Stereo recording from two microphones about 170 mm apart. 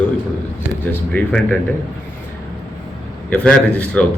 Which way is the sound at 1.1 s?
5° left (ahead or behind).